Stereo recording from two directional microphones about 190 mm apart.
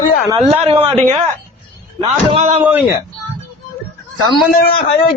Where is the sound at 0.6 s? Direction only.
30° right (ahead or behind).